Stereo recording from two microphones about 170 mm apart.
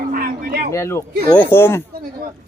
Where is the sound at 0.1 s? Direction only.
60° right (ahead or behind).